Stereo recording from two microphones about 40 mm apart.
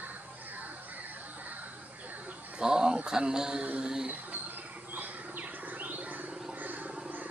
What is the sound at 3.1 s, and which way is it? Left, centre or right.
Speech, centre.